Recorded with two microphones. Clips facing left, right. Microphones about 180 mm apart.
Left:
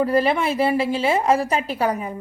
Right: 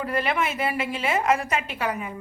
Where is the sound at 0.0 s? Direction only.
35° left (ahead or behind).